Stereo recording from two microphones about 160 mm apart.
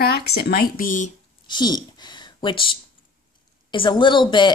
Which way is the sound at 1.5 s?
25° left (ahead or behind).